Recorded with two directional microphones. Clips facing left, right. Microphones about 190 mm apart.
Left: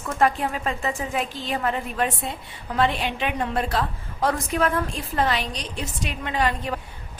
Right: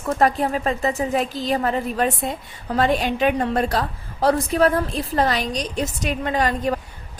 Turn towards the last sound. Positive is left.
turn(degrees=-40)  # may be behind; listen again after turning